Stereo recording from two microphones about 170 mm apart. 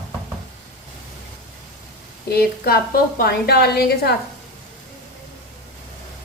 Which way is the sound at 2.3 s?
65° left (ahead or behind).